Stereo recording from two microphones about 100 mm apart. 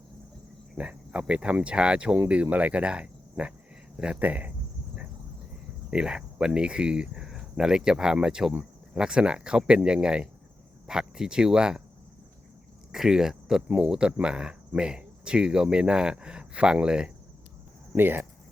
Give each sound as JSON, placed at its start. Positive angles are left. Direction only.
{"t": 0.8, "sound": "speech", "side_deg": -10}
{"t": 5.9, "sound": "speech", "side_deg": -10}
{"t": 12.9, "sound": "speech", "side_deg": -5}
{"t": 17.9, "sound": "speech", "side_deg": -20}